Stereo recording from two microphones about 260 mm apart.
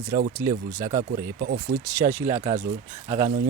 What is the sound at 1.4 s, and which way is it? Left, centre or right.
Speech, right.